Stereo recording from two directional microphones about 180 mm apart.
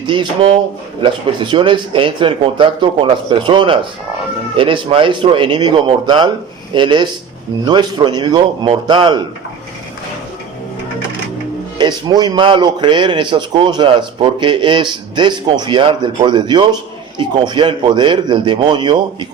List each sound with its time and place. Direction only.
0.0 s a man's voice: 25° right (ahead or behind)
11.8 s a man's voice: 25° right (ahead or behind)